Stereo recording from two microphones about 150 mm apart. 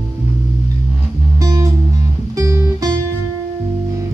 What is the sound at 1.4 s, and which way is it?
Music, 20° right (ahead or behind).